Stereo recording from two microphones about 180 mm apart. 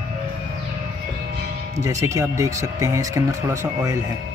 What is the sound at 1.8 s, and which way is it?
Speech, 15° right (ahead or behind).